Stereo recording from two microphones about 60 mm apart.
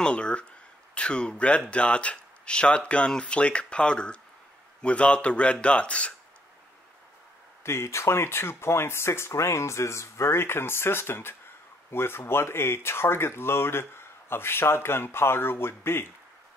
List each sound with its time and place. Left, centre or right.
0.0 s speech: centre
7.6 s speech: left